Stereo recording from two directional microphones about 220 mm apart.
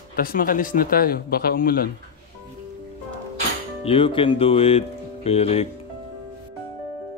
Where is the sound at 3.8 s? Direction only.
25° left (ahead or behind).